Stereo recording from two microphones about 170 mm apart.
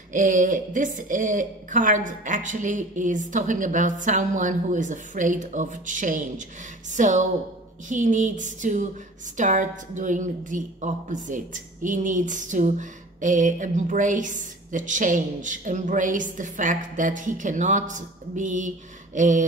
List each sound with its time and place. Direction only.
0.1 s a woman's voice: 50° right (ahead or behind)